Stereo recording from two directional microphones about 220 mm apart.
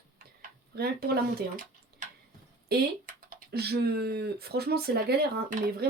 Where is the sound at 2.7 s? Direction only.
40° right (ahead or behind).